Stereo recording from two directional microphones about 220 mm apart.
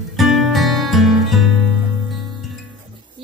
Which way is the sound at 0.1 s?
Centre (ahead or behind).